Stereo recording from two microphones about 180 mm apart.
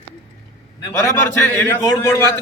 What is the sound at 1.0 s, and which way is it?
Speech, 15° left (ahead or behind).